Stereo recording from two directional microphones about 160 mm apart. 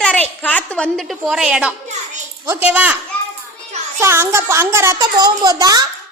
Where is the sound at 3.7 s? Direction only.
45° right (ahead or behind).